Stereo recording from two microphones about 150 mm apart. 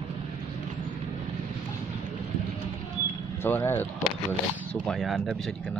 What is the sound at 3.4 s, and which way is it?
Speech, 15° left (ahead or behind).